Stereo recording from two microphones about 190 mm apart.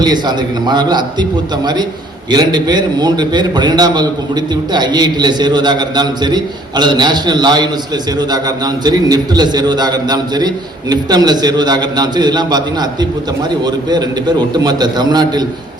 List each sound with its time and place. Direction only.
0.0 s a man's voice: 20° right (ahead or behind)